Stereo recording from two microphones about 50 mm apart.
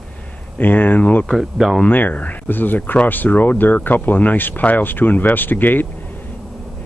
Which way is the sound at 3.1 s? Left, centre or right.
Left.